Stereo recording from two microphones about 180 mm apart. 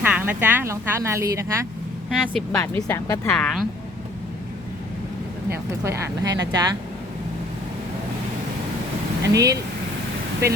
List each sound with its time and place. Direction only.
0.0 s speech: 10° right (ahead or behind)
2.0 s speech: centre (ahead or behind)
2.6 s speech: 15° left (ahead or behind)
3.2 s speech: 5° left (ahead or behind)
5.8 s speech: 15° right (ahead or behind)
9.3 s speech: 20° right (ahead or behind)